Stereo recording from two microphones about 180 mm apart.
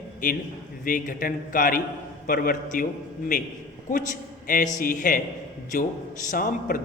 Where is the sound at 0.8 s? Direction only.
50° left (ahead or behind).